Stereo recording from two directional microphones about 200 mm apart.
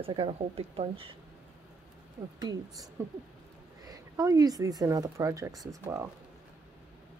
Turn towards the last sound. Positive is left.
turn(degrees=-15)  # may be behind; listen again after turning